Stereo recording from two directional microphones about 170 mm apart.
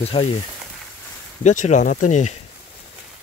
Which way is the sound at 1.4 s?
45° left (ahead or behind).